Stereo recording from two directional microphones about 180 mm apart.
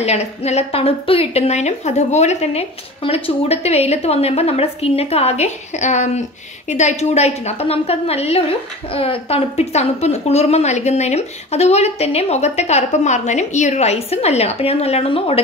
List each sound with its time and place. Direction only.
0.0 s a woman's voice: 35° left (ahead or behind)